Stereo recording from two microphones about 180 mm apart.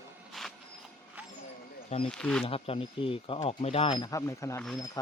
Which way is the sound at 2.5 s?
30° left (ahead or behind).